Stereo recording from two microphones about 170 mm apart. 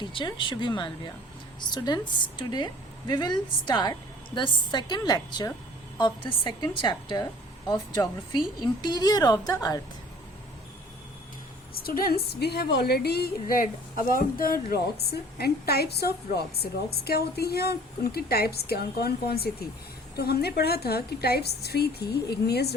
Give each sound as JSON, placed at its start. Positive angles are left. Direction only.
{"t": 0.0, "sound": "a woman's voice", "side_deg": 30}
{"t": 11.7, "sound": "a woman's voice", "side_deg": 65}